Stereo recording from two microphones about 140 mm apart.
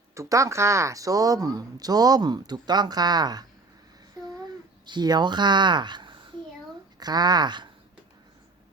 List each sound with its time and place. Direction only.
0.1 s speech: 20° right (ahead or behind)
4.4 s speech: 30° right (ahead or behind)